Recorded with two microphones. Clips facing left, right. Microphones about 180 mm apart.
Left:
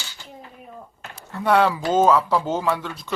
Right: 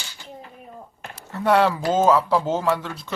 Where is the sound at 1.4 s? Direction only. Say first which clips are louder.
Even; 5° right (ahead or behind).